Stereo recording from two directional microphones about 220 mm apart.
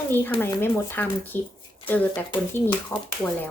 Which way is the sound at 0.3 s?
10° left (ahead or behind).